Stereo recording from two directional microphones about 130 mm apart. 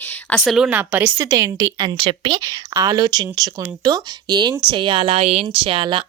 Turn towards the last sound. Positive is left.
turn(degrees=-40)  # may be behind; listen again after turning